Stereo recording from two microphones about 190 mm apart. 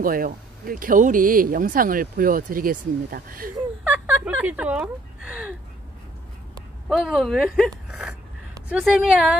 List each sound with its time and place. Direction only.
0.0 s speech: 50° right (ahead or behind)
3.5 s a sound: 10° right (ahead or behind)
6.5 s speech: centre (ahead or behind)